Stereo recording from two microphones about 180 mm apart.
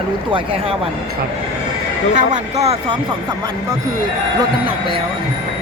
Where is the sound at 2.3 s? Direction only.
35° right (ahead or behind).